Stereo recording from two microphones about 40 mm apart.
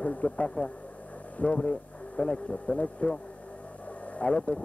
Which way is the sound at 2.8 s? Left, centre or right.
Left.